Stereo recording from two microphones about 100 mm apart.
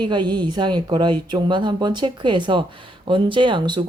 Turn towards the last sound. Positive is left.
turn(degrees=-50)  # may be behind; listen again after turning